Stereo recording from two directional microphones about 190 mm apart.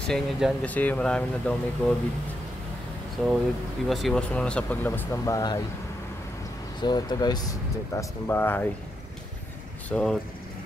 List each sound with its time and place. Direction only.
0.1 s speech: centre (ahead or behind)
0.7 s speech: 10° left (ahead or behind)
3.2 s speech: 5° left (ahead or behind); by 5.6 s 20° left (ahead or behind)
6.8 s speech: 20° left (ahead or behind)
9.8 s speech: 5° left (ahead or behind)